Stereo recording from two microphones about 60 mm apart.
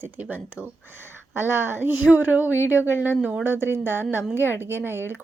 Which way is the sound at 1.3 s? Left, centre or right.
Right.